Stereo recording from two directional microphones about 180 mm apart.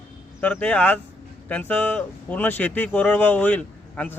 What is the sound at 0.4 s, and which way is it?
Speech, 5° left (ahead or behind).